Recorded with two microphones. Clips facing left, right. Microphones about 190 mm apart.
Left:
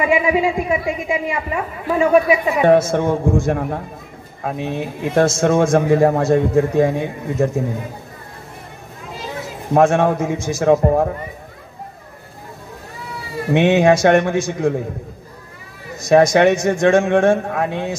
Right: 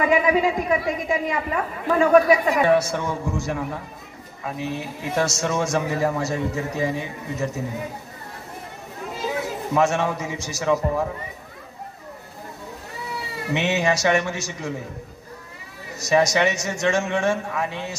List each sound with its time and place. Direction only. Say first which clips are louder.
0.0 s a man's voice: left 2 dB; 10° left (ahead or behind)
2.6 s a man's voice: left 6 dB; 50° left (ahead or behind)
9.7 s a man's voice: left 8 dB; 55° left (ahead or behind)
13.5 s a man's voice: left 9 dB; 55° left (ahead or behind)
16.0 s a man's voice: left 7 dB; 55° left (ahead or behind)